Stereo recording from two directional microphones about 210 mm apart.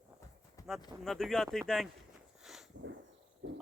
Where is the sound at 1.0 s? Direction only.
Centre (ahead or behind).